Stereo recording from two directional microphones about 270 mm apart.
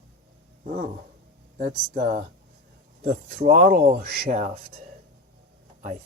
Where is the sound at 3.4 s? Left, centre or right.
Right.